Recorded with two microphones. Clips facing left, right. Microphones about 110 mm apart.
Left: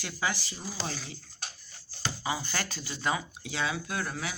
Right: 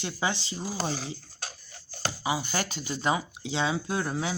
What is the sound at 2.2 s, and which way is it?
Speech, 15° right (ahead or behind).